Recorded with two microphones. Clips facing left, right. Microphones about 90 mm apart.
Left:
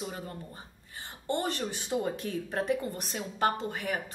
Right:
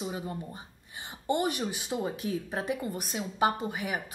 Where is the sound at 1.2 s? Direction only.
15° right (ahead or behind).